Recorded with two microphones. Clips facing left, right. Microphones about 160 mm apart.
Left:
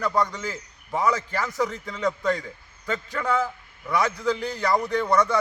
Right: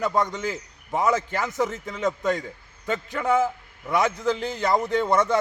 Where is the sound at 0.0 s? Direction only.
20° right (ahead or behind).